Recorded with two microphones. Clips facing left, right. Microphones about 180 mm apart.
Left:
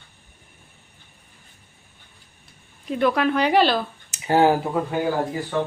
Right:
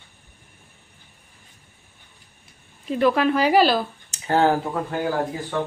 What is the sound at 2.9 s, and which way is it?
Speech, centre (ahead or behind).